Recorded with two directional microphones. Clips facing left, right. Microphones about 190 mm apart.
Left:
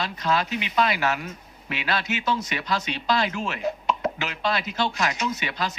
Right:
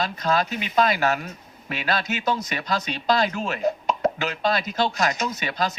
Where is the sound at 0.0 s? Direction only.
40° right (ahead or behind).